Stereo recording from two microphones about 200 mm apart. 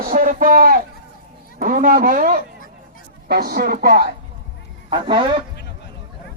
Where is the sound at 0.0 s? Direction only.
45° right (ahead or behind).